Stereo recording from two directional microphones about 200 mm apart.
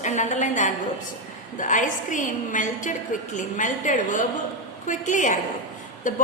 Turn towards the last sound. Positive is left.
turn(degrees=40)  # may be behind; listen again after turning